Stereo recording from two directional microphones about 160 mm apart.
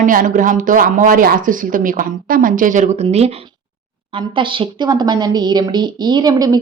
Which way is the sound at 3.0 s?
40° right (ahead or behind).